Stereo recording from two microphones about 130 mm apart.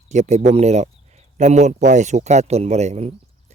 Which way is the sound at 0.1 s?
65° right (ahead or behind).